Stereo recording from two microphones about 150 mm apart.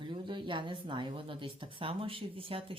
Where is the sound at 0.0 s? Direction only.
30° right (ahead or behind).